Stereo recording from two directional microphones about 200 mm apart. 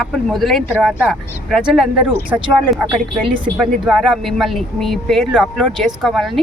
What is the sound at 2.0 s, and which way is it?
Speech, 25° right (ahead or behind).